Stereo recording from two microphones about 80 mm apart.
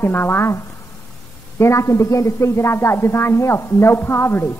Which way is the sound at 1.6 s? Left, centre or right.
Left.